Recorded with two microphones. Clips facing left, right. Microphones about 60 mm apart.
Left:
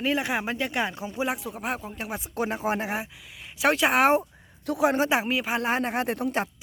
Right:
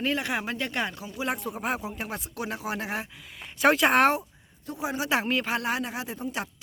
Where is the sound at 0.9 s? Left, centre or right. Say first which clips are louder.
Left 5 dB; left.